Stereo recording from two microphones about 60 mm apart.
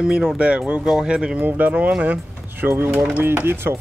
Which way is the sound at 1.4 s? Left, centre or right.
Right.